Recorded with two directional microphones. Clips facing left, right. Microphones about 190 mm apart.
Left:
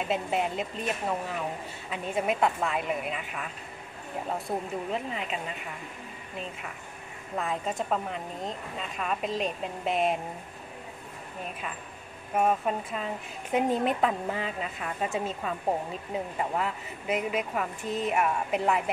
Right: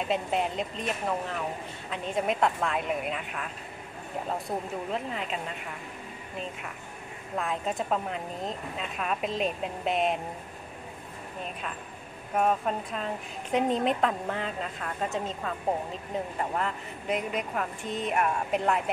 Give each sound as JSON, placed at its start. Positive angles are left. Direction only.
{"t": 0.1, "sound": "a woman's voice", "side_deg": 0}
{"t": 4.5, "sound": "a woman's voice", "side_deg": 0}
{"t": 7.3, "sound": "a woman's voice", "side_deg": 0}
{"t": 12.4, "sound": "a woman's voice", "side_deg": 5}